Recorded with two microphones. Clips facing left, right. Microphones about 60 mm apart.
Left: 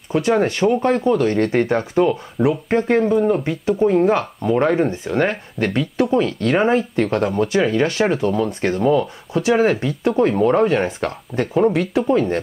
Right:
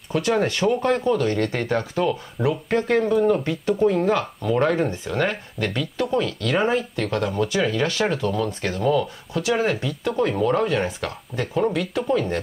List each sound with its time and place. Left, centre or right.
0.1 s speech: left
9.4 s speech: left